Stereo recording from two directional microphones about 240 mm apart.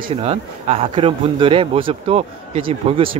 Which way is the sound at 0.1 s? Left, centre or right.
Right.